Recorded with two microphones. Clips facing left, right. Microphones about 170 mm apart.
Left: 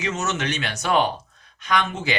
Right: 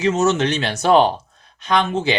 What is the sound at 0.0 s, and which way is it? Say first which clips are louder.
Speech: right 9 dB; 30° right (ahead or behind).